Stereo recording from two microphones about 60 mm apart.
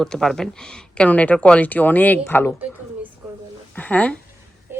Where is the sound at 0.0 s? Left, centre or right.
Centre; by 2.2 s left.